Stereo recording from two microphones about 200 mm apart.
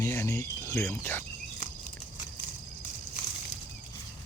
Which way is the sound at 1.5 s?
40° left (ahead or behind).